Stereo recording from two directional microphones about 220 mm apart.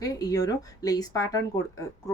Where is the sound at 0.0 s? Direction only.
15° left (ahead or behind).